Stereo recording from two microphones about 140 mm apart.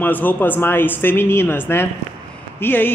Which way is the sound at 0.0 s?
15° left (ahead or behind).